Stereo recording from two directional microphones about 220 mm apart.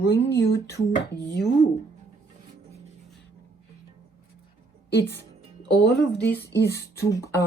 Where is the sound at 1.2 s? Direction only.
50° left (ahead or behind).